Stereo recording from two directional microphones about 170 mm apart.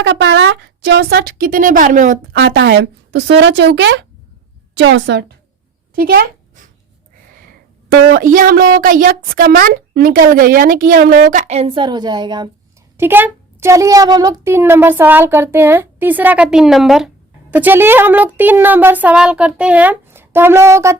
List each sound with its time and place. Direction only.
0.0 s a woman's voice: 90° right; by 2.4 s 50° right (ahead or behind)
2.4 s a woman's voice: 70° right (ahead or behind)
5.9 s a sound: 60° right (ahead or behind)
8.1 s a woman's voice: 50° right (ahead or behind); by 12.5 s 25° right (ahead or behind)
13.0 s a child's voice: 10° right (ahead or behind)